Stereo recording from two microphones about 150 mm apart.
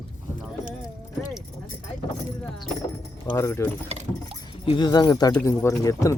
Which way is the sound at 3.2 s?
15° left (ahead or behind).